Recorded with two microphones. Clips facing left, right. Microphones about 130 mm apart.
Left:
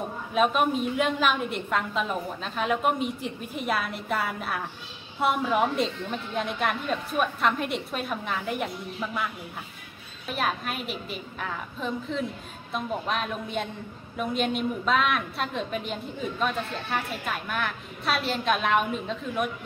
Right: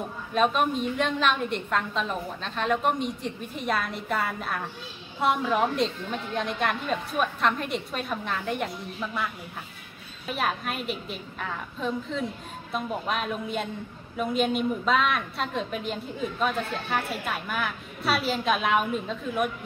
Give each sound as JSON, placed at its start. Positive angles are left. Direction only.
{"t": 0.3, "sound": "a woman's voice", "side_deg": 5}